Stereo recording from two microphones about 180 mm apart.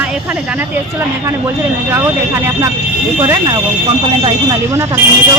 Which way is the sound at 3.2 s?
20° right (ahead or behind).